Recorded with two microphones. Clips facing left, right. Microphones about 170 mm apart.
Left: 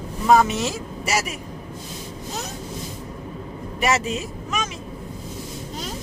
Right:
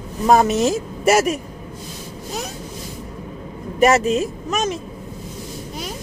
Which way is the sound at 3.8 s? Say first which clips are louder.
Right 8 dB; 45° right (ahead or behind).